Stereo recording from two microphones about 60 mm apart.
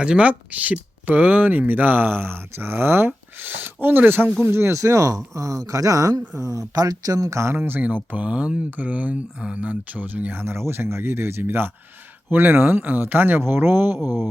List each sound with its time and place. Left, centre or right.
0.0 s speech: centre; by 4.8 s right
4.8 s speech: right
7.6 s speech: right
10.4 s speech: right